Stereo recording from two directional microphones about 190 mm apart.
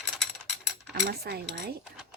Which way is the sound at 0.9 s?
60° right (ahead or behind).